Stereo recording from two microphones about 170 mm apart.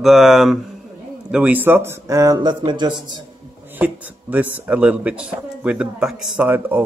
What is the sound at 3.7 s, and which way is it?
Speech, 10° right (ahead or behind).